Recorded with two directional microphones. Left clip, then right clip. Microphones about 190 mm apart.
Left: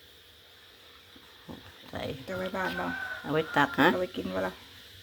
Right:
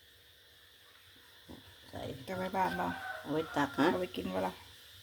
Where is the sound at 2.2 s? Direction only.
30° right (ahead or behind).